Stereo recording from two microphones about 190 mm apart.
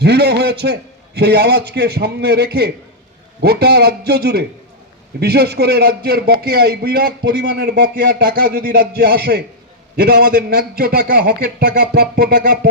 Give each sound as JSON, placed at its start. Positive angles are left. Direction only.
{"t": 0.0, "sound": "a man's voice", "side_deg": -60}